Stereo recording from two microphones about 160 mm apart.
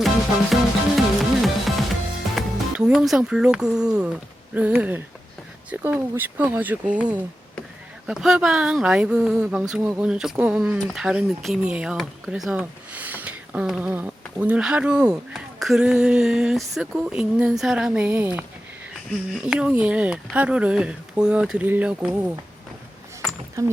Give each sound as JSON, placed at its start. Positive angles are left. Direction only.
{"t": 0.5, "sound": "music", "side_deg": 0}
{"t": 2.3, "sound": "speech", "side_deg": -5}
{"t": 23.6, "sound": "speech", "side_deg": -20}